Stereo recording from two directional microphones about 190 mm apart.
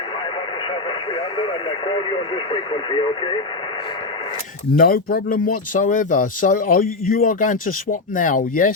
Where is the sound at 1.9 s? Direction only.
25° left (ahead or behind).